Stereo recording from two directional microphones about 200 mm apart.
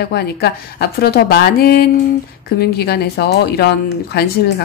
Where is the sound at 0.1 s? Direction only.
55° left (ahead or behind).